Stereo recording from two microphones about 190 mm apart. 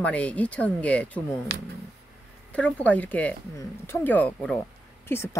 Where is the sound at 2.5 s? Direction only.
5° left (ahead or behind).